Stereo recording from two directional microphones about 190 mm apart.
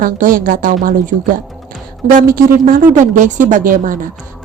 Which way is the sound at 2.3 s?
45° right (ahead or behind).